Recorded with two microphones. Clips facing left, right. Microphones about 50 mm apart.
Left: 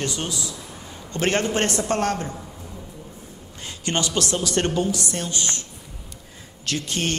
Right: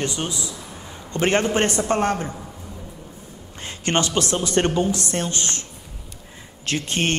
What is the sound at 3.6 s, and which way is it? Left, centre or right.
Speech, right.